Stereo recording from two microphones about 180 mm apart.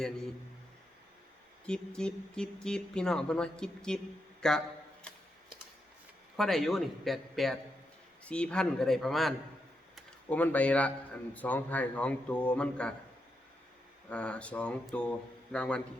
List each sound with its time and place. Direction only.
1.6 s speech: 5° left (ahead or behind)
6.3 s a man's voice: centre (ahead or behind)
14.1 s a man's voice: 5° left (ahead or behind)